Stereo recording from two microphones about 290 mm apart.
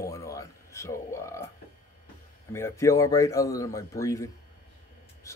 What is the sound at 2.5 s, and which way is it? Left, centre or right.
Speech, centre.